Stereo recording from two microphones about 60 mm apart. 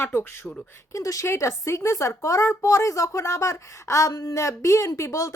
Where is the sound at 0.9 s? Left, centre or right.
Left.